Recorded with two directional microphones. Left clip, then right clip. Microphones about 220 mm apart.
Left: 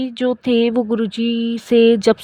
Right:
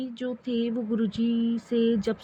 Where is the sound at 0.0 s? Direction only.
45° left (ahead or behind).